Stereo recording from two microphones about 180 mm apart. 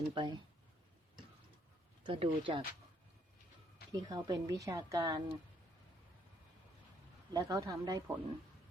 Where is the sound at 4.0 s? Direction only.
20° right (ahead or behind).